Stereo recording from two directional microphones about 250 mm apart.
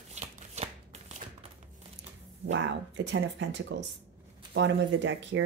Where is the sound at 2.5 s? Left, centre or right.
Right.